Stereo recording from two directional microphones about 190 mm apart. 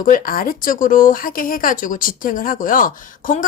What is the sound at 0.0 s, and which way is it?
Speech, 45° left (ahead or behind).